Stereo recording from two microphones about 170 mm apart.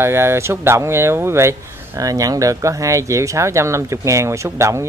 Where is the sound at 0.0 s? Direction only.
15° right (ahead or behind).